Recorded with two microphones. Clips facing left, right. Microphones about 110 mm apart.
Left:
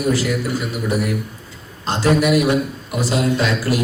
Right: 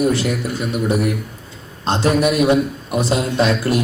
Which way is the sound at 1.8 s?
25° right (ahead or behind).